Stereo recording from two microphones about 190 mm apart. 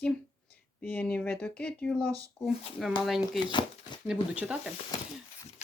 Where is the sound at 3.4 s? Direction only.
25° left (ahead or behind).